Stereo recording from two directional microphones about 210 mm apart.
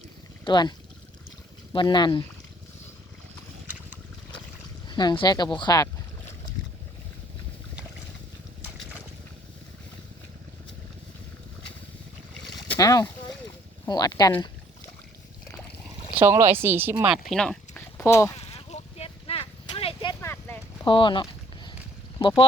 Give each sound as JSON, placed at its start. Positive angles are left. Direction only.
{"t": 0.4, "sound": "speech", "side_deg": 20}
{"t": 1.7, "sound": "speech", "side_deg": 20}
{"t": 4.9, "sound": "speech", "side_deg": 20}
{"t": 12.7, "sound": "speech", "side_deg": 15}
{"t": 16.1, "sound": "speech", "side_deg": -10}
{"t": 18.3, "sound": "a sound", "side_deg": 30}
{"t": 20.2, "sound": "a sound", "side_deg": 10}
{"t": 20.8, "sound": "a sound", "side_deg": 25}
{"t": 22.2, "sound": "speech", "side_deg": 25}